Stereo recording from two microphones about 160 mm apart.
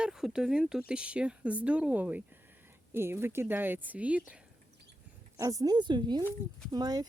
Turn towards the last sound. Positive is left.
turn(degrees=-25)  # may be behind; listen again after turning